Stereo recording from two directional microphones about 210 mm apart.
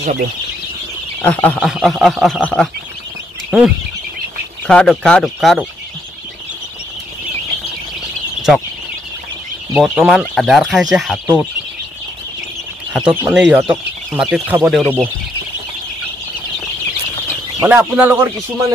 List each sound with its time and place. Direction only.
0.0 s speech: 45° right (ahead or behind)
1.2 s speech: 5° left (ahead or behind)
8.4 s bird: centre (ahead or behind)
9.8 s speech: centre (ahead or behind)
12.9 s speech: 10° right (ahead or behind)
17.6 s speech: 10° right (ahead or behind)